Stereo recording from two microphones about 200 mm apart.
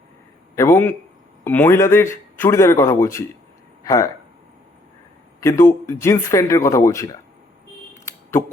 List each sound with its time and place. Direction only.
0.5 s speech: 15° left (ahead or behind)
5.4 s speech: 15° left (ahead or behind)
8.0 s a sound: 15° left (ahead or behind)